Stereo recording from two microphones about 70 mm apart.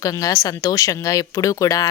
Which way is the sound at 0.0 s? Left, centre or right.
Left.